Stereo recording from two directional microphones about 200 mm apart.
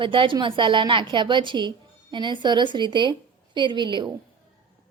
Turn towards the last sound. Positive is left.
turn(degrees=-25)  # may be behind; listen again after turning